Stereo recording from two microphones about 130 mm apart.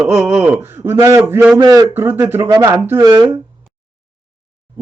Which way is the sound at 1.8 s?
15° right (ahead or behind).